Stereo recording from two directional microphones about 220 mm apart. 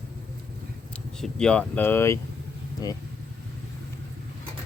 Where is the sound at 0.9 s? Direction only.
5° left (ahead or behind).